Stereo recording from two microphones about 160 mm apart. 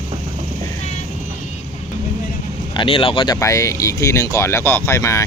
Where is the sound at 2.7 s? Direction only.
35° left (ahead or behind).